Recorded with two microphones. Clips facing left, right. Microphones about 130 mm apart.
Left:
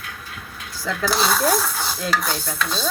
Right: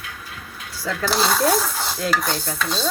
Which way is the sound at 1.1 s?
25° right (ahead or behind).